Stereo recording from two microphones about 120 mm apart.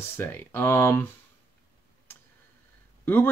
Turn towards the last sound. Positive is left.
turn(degrees=15)  # may be behind; listen again after turning